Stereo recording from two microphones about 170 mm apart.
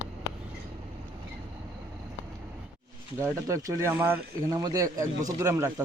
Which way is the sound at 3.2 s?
20° right (ahead or behind).